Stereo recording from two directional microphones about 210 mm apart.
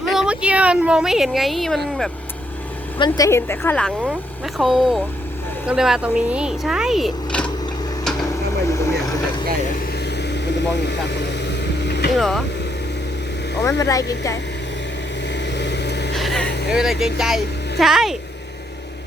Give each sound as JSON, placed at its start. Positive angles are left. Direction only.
{"t": 0.1, "sound": "speech", "side_deg": -5}
{"t": 3.0, "sound": "speech", "side_deg": 15}
{"t": 8.6, "sound": "vehicle", "side_deg": 15}
{"t": 10.2, "sound": "vehicle", "side_deg": 55}
{"t": 12.1, "sound": "speech", "side_deg": 0}
{"t": 13.7, "sound": "speech", "side_deg": 15}
{"t": 15.5, "sound": "vehicle", "side_deg": 55}
{"t": 16.1, "sound": "vehicle", "side_deg": 0}
{"t": 16.7, "sound": "speech", "side_deg": 0}